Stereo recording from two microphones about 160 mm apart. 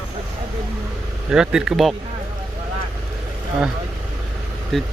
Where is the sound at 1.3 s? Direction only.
5° right (ahead or behind).